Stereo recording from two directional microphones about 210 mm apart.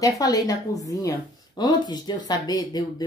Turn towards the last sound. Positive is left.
turn(degrees=20)  # may be behind; listen again after turning